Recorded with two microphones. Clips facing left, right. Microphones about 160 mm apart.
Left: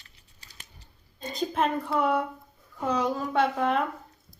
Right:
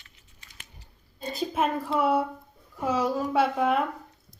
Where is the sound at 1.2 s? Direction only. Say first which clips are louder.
Even; 5° right (ahead or behind).